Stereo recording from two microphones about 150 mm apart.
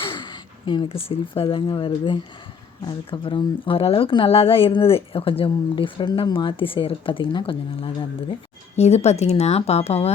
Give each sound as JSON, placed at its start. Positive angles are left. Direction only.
{"t": 0.0, "sound": "a woman's voice", "side_deg": 30}
{"t": 8.7, "sound": "speech", "side_deg": 45}